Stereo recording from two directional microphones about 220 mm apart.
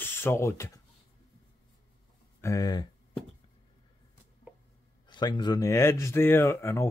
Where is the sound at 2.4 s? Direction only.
15° left (ahead or behind).